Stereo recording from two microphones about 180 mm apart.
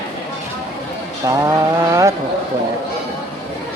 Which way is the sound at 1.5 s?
15° right (ahead or behind).